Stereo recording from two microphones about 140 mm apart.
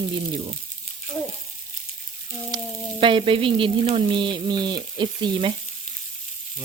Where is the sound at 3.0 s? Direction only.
40° right (ahead or behind).